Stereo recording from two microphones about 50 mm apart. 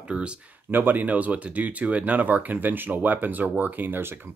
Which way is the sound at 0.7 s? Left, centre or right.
Right.